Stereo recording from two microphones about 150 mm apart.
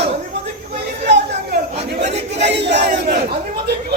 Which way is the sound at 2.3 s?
45° right (ahead or behind).